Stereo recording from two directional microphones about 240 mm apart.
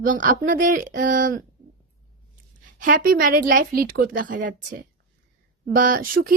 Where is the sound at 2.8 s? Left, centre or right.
Right.